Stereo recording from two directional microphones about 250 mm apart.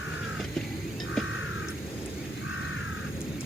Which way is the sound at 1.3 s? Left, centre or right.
Left.